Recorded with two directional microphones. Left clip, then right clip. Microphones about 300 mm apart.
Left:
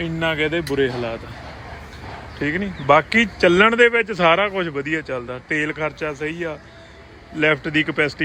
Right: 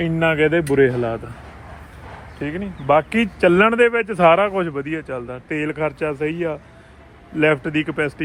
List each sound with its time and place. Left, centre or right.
0.0 s speech: centre
2.4 s speech: centre